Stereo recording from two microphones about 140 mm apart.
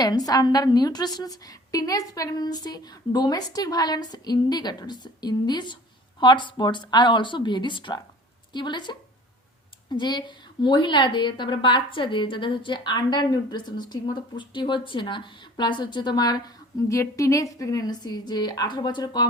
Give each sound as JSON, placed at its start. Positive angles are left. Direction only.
{"t": 0.0, "sound": "a woman's voice", "side_deg": 25}